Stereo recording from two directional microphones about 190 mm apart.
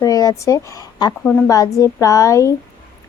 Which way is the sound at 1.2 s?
5° left (ahead or behind).